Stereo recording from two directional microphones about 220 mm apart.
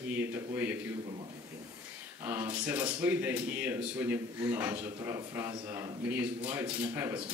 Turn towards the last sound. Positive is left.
turn(degrees=-10)  # may be behind; listen again after turning